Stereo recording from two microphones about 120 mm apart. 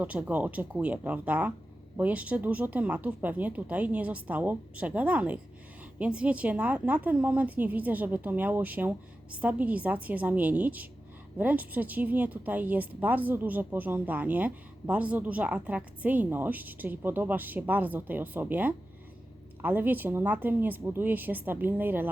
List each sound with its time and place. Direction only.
0.0 s a woman's voice: 10° right (ahead or behind)